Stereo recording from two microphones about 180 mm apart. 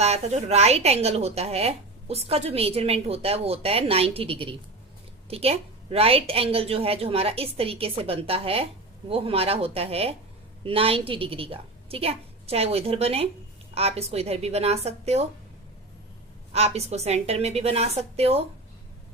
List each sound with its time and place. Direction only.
0.0 s speech: 35° right (ahead or behind)
16.5 s speech: 35° right (ahead or behind)